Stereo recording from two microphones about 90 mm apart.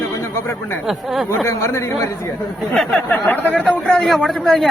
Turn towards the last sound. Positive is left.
turn(degrees=5)  # may be behind; listen again after turning